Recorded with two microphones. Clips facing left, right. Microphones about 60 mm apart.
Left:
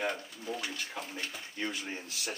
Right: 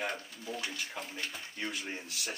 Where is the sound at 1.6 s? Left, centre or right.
Centre.